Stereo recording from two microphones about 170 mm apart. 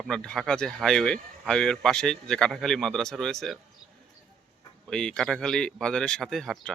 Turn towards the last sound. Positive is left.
turn(degrees=0)  # may be behind; listen again after turning